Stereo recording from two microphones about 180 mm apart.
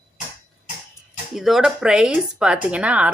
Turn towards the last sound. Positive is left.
turn(degrees=-5)  # may be behind; listen again after turning